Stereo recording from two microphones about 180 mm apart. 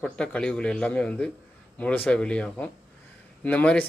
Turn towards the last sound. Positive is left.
turn(degrees=10)  # may be behind; listen again after turning